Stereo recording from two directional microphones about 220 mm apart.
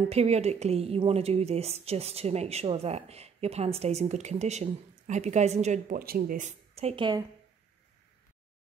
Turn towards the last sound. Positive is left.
turn(degrees=-20)  # may be behind; listen again after turning